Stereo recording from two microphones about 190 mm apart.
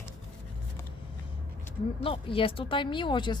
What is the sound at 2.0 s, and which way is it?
Speech, 30° left (ahead or behind).